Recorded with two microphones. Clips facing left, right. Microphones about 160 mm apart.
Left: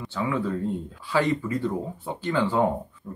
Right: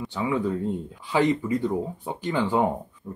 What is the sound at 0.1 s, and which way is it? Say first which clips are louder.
Speech: right 1 dB; 15° right (ahead or behind).